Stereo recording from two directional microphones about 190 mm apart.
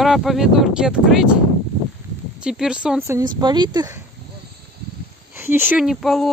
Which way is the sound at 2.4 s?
5° right (ahead or behind).